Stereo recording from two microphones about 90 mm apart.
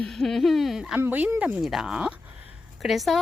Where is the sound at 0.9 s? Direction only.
20° right (ahead or behind).